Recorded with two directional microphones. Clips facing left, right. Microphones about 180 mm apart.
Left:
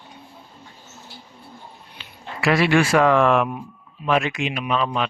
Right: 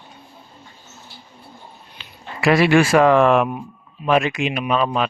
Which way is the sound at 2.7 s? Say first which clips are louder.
Right 2 dB; 25° right (ahead or behind).